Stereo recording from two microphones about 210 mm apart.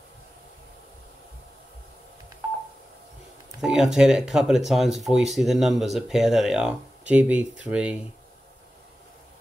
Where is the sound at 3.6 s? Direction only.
Centre (ahead or behind).